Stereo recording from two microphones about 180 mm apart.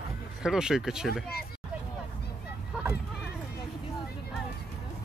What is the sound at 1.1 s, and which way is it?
Speech, 60° left (ahead or behind).